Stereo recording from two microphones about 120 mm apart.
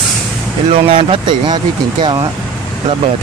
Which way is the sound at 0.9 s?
50° right (ahead or behind).